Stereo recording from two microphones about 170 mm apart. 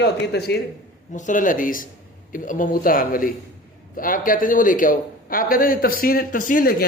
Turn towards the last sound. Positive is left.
turn(degrees=60)  # may be behind; listen again after turning